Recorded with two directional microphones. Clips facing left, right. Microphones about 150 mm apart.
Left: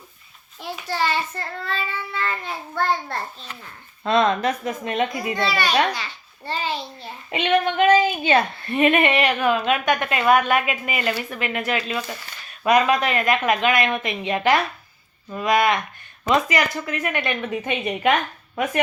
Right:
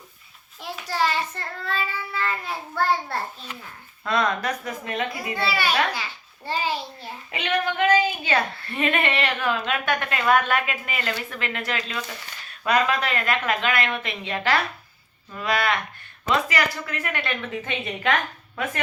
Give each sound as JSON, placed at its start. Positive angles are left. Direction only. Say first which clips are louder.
{"t": 0.6, "sound": "child singing", "louder": "even", "side_deg": 0}
{"t": 4.0, "sound": "a woman's voice", "louder": "left 5 dB", "side_deg": 25}
{"t": 5.3, "sound": "a child's voice", "louder": "right 1 dB", "side_deg": -10}
{"t": 7.3, "sound": "a woman's voice", "louder": "left 5 dB", "side_deg": 25}